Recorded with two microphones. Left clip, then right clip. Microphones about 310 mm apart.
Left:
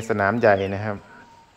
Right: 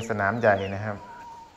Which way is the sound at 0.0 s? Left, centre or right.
Left.